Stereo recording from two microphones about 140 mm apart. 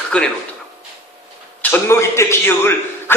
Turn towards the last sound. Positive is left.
turn(degrees=15)  # may be behind; listen again after turning